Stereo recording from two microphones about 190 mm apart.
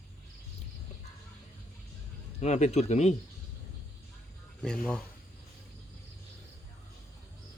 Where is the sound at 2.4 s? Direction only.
35° left (ahead or behind).